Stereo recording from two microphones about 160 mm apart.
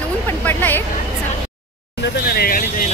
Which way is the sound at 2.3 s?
75° left (ahead or behind).